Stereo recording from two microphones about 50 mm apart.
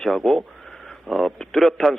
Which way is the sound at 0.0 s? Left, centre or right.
Centre.